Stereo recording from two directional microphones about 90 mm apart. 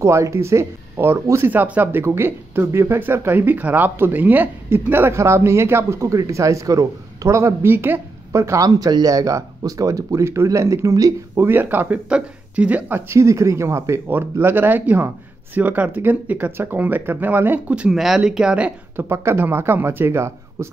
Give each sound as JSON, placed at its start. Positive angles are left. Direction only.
{"t": 0.0, "sound": "speech", "side_deg": -30}
{"t": 8.3, "sound": "speech", "side_deg": -35}
{"t": 8.6, "sound": "speech", "side_deg": -45}
{"t": 11.4, "sound": "speech", "side_deg": -25}
{"t": 13.1, "sound": "speech", "side_deg": -35}
{"t": 17.9, "sound": "speech", "side_deg": -5}
{"t": 18.9, "sound": "speech", "side_deg": -30}